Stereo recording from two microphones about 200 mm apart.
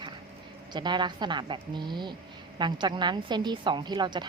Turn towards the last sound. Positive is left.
turn(degrees=-20)  # may be behind; listen again after turning